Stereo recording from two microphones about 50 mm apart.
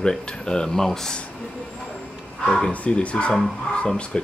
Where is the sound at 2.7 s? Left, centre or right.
Left.